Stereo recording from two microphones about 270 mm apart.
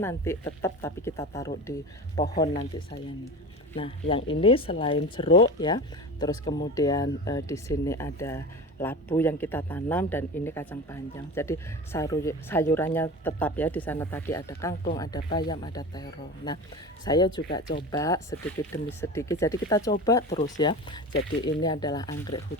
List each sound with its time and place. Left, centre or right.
0.0 s speech: centre
2.3 s speech: left
3.8 s speech: left